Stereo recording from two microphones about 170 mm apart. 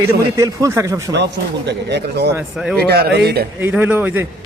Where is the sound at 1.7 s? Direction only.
80° right.